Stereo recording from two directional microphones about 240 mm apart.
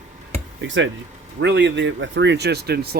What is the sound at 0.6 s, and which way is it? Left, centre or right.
Speech, right.